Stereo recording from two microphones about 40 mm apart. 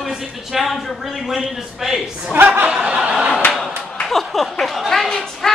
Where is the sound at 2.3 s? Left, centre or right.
Right.